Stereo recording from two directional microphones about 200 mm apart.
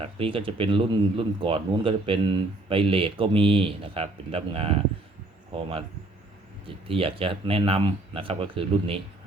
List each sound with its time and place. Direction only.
0.0 s speech: 25° right (ahead or behind)
6.8 s speech: 25° right (ahead or behind)